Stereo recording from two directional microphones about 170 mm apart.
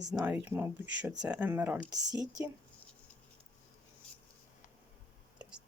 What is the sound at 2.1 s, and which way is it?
Speech, 20° right (ahead or behind).